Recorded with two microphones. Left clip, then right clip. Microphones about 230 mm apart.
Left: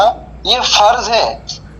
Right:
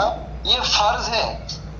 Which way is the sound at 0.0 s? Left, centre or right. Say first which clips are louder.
Left 9 dB; left.